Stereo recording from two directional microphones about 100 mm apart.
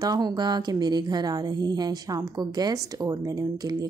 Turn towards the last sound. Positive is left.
turn(degrees=-35)  # may be behind; listen again after turning